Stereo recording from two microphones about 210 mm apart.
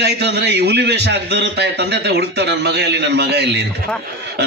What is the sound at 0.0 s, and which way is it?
A man's voice, 55° right (ahead or behind).